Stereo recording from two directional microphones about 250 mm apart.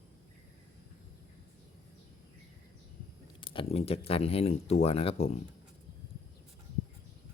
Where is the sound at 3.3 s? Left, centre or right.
Centre.